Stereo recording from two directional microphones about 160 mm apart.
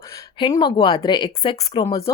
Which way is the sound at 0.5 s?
25° left (ahead or behind).